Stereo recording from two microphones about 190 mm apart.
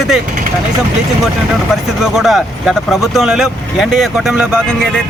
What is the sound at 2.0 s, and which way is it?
Speech, centre (ahead or behind).